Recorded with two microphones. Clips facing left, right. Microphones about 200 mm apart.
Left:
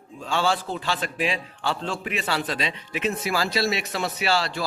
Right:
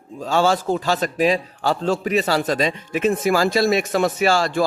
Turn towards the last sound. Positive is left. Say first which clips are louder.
# right 7 dB
turn(degrees=-50)  # may be behind; listen again after turning